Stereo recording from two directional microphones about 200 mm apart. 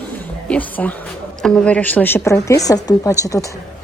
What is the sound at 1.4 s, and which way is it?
A woman's voice, 5° left (ahead or behind).